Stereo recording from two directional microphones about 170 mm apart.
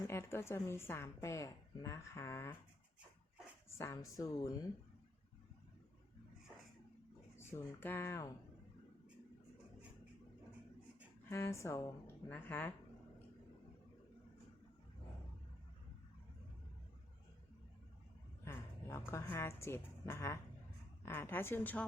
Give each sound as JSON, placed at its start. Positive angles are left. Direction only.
{"t": 0.0, "sound": "speech", "side_deg": 15}
{"t": 3.8, "sound": "speech", "side_deg": 20}
{"t": 7.3, "sound": "speech", "side_deg": 15}
{"t": 11.3, "sound": "speech", "side_deg": 15}
{"t": 18.4, "sound": "speech", "side_deg": 15}